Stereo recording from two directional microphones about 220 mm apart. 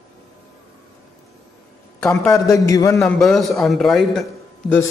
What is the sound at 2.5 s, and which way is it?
Speech, 15° left (ahead or behind).